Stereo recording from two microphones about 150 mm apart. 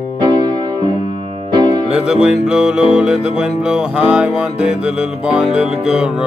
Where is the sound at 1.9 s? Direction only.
5° right (ahead or behind).